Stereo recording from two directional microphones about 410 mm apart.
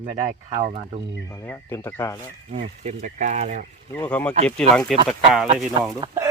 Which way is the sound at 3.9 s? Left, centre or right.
Centre.